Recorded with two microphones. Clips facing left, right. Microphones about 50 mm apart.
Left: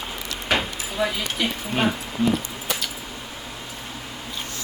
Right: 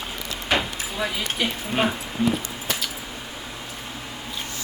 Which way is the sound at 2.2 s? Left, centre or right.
Centre.